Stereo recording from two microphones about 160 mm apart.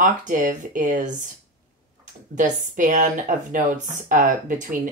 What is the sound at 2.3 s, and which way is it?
A woman's voice, 50° right (ahead or behind).